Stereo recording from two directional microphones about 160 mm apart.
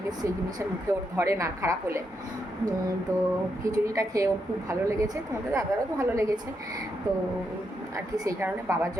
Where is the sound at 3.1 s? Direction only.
20° right (ahead or behind).